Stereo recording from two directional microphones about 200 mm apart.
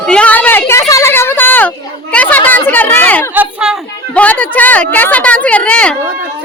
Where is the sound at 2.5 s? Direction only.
10° left (ahead or behind).